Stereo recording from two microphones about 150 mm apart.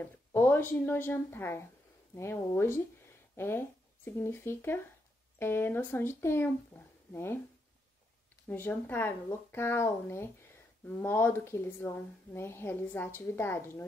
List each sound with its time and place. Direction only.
0.0 s speech: 15° left (ahead or behind)
8.5 s speech: 15° left (ahead or behind)